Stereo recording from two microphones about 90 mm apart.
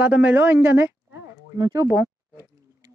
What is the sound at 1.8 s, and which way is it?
Speech, 30° right (ahead or behind).